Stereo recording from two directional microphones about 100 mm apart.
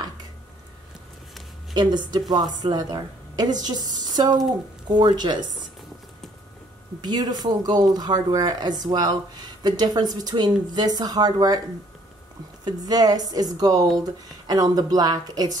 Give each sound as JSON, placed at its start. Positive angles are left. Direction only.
{"t": 1.7, "sound": "speech", "side_deg": -45}
{"t": 7.0, "sound": "speech", "side_deg": -45}
{"t": 12.6, "sound": "speech", "side_deg": -40}